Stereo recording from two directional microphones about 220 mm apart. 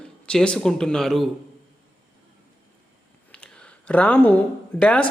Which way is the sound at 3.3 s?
5° left (ahead or behind).